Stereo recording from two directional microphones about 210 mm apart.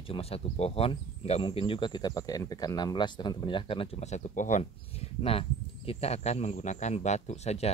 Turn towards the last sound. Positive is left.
turn(degrees=30)  # may be behind; listen again after turning